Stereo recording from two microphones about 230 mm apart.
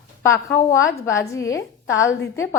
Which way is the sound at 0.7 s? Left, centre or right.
Left.